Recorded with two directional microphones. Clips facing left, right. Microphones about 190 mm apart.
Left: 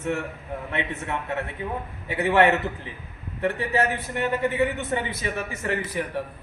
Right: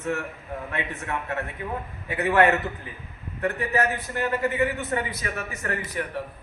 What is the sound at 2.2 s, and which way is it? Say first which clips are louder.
A man's voice: left 1 dB; 25° left (ahead or behind).